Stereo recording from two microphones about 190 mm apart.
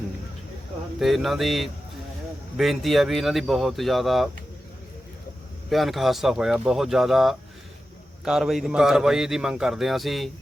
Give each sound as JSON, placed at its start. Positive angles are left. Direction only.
{"t": 0.9, "sound": "a man's voice", "side_deg": 0}
{"t": 5.6, "sound": "a man's voice", "side_deg": 0}